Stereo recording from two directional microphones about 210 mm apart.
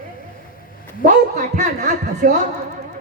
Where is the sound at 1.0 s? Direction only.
35° right (ahead or behind).